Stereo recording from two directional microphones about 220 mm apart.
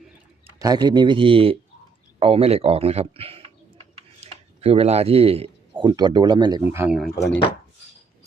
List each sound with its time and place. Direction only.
0.4 s speech: 15° right (ahead or behind)